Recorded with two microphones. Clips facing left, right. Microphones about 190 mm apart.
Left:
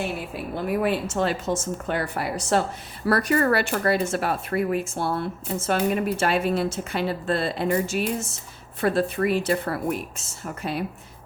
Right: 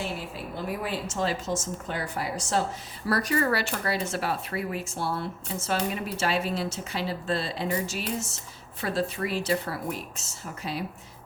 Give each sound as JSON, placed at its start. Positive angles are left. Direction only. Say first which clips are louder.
{"t": 0.5, "sound": "speech", "louder": "left 8 dB", "side_deg": 60}